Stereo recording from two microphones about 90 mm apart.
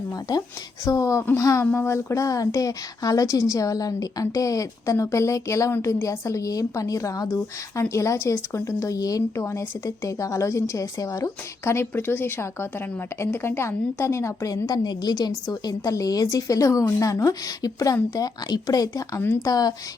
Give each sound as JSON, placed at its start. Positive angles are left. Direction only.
{"t": 0.1, "sound": "a woman's voice", "side_deg": 45}
{"t": 14.8, "sound": "a woman's voice", "side_deg": 50}